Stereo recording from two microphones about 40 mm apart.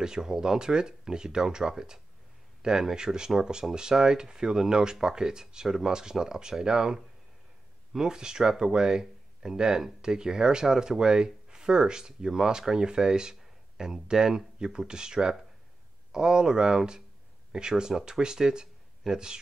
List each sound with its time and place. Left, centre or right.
0.0 s speech: centre
8.0 s speech: centre